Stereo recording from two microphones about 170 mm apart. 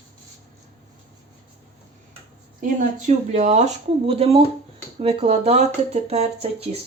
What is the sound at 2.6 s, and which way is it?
Speech, 45° right (ahead or behind).